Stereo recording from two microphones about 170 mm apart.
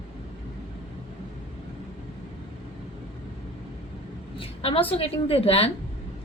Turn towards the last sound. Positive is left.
turn(degrees=35)  # may be behind; listen again after turning